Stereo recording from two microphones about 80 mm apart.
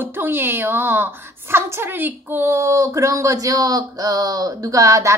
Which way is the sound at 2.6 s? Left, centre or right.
Right.